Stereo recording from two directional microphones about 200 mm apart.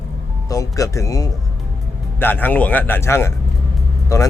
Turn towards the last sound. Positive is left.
turn(degrees=15)  # may be behind; listen again after turning